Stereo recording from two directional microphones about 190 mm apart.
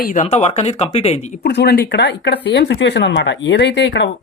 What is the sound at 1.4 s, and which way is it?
Speech, 60° left (ahead or behind).